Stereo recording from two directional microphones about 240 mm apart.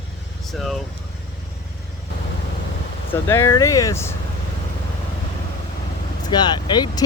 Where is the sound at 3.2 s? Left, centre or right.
Centre.